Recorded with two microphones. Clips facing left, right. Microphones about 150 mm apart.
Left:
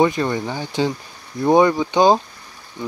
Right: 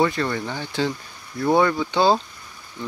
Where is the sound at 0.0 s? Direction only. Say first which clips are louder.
Left 4 dB; 20° left (ahead or behind).